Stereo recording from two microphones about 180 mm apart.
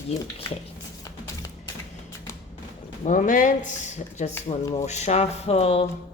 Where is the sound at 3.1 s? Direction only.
45° left (ahead or behind).